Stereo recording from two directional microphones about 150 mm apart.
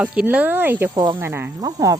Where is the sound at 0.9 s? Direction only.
30° right (ahead or behind).